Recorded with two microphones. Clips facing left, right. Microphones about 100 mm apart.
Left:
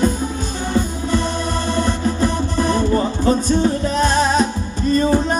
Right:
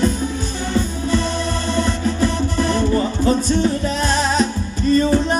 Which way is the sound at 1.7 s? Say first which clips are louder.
Even; 15° left (ahead or behind).